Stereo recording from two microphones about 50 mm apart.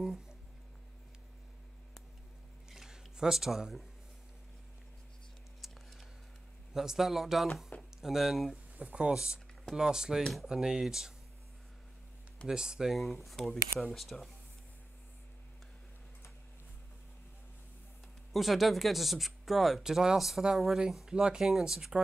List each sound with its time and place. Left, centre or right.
0.0 s a sound: centre
2.7 s a sound: centre
5.6 s a sound: centre
6.7 s speech: centre
8.7 s speech: right
12.4 s speech: centre
12.9 s speech: centre
18.3 s speech: centre
21.1 s speech: centre